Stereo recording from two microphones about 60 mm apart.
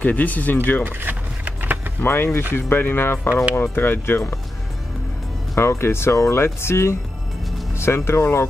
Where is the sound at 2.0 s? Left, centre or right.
Left.